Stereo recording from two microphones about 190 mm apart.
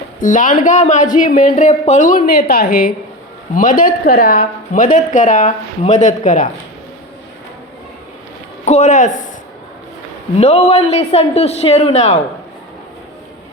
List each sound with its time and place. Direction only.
0.2 s speech: 45° left (ahead or behind)
8.6 s a man's voice: 35° left (ahead or behind)
10.3 s a man's voice: 35° left (ahead or behind)